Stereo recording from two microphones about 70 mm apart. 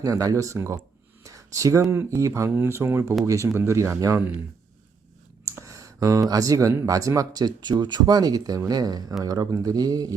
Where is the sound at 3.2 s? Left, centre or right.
Right.